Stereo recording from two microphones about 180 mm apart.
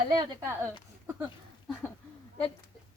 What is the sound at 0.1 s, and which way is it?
Speech, 25° right (ahead or behind).